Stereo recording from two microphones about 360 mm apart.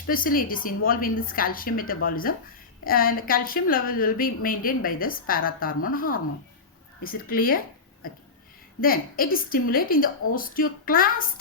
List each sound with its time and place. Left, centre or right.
0.1 s a woman's voice: left
8.8 s a woman's voice: left